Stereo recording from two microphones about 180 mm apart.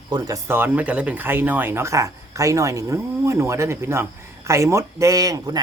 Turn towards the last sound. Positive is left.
turn(degrees=-20)  # may be behind; listen again after turning